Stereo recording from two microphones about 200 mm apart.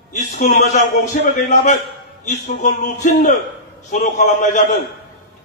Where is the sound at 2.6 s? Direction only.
35° left (ahead or behind).